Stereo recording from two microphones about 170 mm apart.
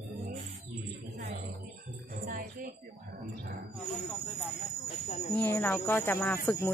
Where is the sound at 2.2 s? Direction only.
55° right (ahead or behind).